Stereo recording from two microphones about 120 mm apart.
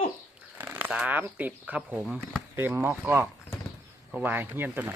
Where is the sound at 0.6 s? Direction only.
15° right (ahead or behind).